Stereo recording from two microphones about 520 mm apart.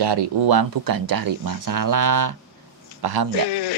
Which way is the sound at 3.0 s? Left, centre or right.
Right.